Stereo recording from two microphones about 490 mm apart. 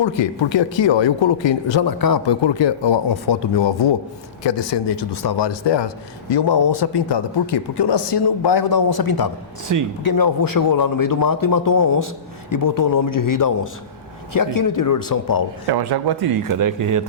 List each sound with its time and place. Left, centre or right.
0.0 s speech: left
2.0 s a man's voice: left
15.6 s speech: right